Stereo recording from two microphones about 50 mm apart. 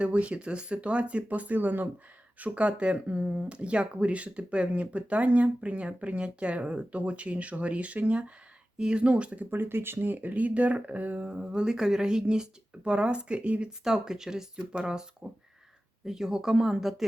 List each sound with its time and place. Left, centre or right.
0.0 s speech: right
9.5 s speech: right
11.3 s speech: right
13.8 s speech: centre